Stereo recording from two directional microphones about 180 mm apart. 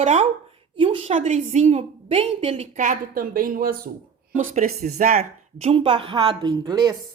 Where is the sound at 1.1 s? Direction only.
40° right (ahead or behind).